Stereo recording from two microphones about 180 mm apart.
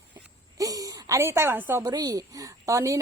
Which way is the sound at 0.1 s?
20° right (ahead or behind).